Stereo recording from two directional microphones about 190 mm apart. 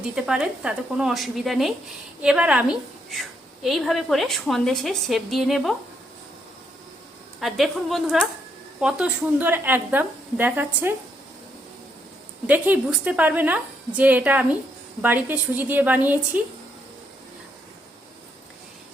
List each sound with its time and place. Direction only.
0.2 s a woman's voice: 5° right (ahead or behind)
7.3 s a woman's voice: centre (ahead or behind)
12.5 s a woman's voice: 10° right (ahead or behind)